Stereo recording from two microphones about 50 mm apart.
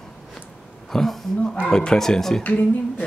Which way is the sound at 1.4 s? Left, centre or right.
Left.